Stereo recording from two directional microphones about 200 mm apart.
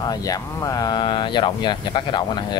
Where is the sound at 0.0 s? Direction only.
20° left (ahead or behind).